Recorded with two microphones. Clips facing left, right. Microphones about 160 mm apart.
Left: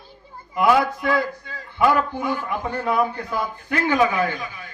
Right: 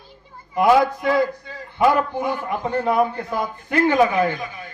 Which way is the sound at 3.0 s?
45° right (ahead or behind).